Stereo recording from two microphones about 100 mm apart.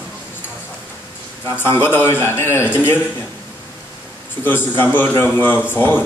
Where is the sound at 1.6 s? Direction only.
20° left (ahead or behind).